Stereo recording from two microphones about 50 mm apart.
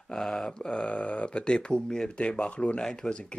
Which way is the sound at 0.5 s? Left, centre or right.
Centre.